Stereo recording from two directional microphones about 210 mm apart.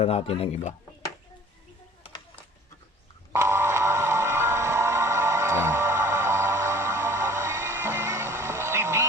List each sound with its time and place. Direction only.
0.0 s speech: 30° left (ahead or behind)
3.3 s music: 15° right (ahead or behind)